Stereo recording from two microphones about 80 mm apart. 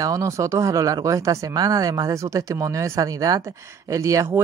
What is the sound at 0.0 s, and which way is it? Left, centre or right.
Speech, right.